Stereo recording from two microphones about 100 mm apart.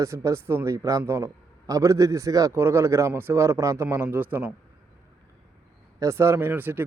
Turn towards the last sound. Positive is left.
turn(degrees=-20)  # may be behind; listen again after turning